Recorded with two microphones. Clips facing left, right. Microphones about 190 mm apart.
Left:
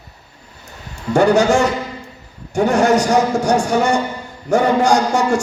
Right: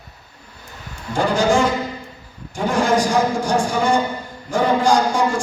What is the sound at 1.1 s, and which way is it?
A man's voice, 70° left (ahead or behind).